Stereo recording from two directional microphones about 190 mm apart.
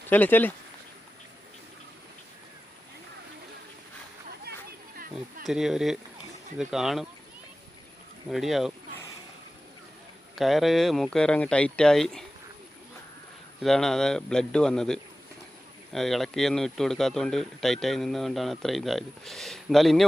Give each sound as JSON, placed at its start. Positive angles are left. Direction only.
{"t": 0.1, "sound": "speech", "side_deg": 10}
{"t": 4.5, "sound": "a sound", "side_deg": -60}
{"t": 5.5, "sound": "speech", "side_deg": 0}
{"t": 8.3, "sound": "speech", "side_deg": 0}
{"t": 10.3, "sound": "speech", "side_deg": 0}
{"t": 13.6, "sound": "speech", "side_deg": 0}